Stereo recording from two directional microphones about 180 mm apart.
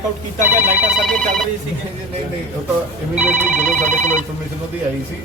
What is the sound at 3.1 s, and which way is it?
Speech, 10° right (ahead or behind).